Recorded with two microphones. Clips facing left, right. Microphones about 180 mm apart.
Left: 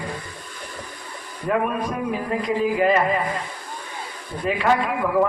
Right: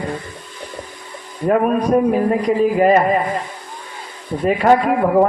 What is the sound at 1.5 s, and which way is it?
A man's voice, 40° right (ahead or behind).